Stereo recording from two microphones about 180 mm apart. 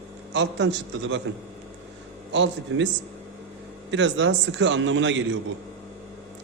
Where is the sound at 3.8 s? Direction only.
90° right.